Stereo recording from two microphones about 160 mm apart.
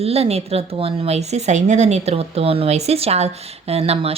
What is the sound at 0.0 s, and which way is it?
Speech, 40° right (ahead or behind).